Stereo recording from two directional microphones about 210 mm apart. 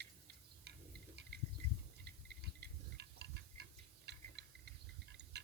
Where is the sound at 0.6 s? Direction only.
50° right (ahead or behind).